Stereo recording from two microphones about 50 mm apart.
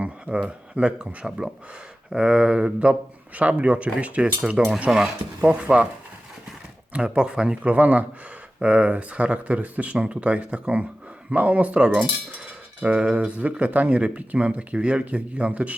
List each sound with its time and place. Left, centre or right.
0.0 s speech: right
3.3 s speech: right
4.9 s speech: centre
5.4 s speech: right
6.9 s speech: right
7.7 s speech: right
8.5 s speech: right